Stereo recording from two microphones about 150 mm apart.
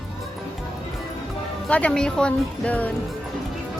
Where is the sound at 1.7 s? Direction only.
5° left (ahead or behind).